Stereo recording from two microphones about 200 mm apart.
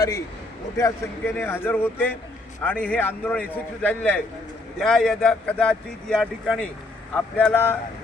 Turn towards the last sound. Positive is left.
turn(degrees=5)  # may be behind; listen again after turning